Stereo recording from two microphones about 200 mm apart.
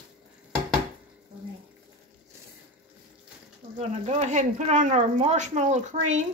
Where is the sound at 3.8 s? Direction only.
35° right (ahead or behind).